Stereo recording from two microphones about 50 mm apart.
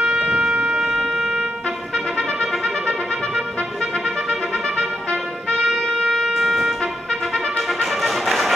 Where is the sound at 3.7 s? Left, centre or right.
Centre.